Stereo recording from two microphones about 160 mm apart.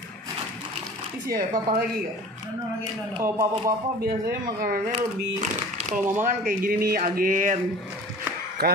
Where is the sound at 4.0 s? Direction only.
70° right (ahead or behind).